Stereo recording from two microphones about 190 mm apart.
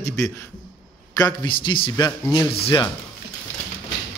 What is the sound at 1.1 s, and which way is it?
A man's voice, 20° left (ahead or behind).